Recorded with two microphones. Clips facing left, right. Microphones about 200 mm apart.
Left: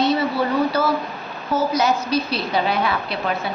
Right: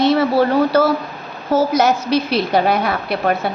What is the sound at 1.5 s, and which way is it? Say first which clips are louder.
Speech: right 5 dB; 90° right.